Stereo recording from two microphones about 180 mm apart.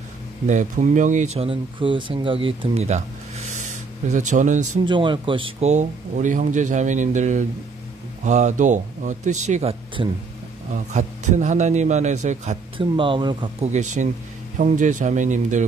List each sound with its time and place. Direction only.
0.5 s speech: 45° right (ahead or behind)
4.8 s speech: 25° right (ahead or behind)
13.7 s speech: 40° right (ahead or behind)